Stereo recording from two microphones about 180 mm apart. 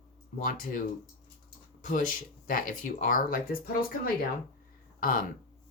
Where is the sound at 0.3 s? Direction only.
50° left (ahead or behind).